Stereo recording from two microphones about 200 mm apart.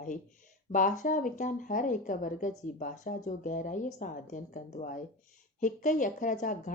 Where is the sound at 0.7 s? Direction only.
40° left (ahead or behind).